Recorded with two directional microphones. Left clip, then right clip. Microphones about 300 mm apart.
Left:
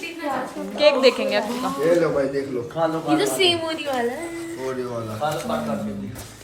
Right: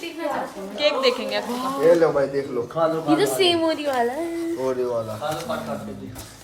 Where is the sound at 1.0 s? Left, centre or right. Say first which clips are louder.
Left 4 dB; centre.